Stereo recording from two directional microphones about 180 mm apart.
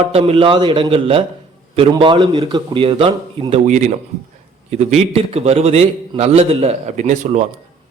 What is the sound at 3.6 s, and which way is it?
A man's voice, 40° right (ahead or behind).